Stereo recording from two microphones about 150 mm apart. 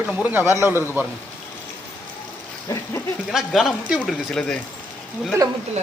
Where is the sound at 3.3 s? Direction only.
Centre (ahead or behind).